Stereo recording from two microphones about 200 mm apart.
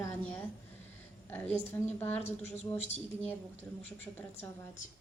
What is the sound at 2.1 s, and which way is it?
A woman's voice, 35° left (ahead or behind).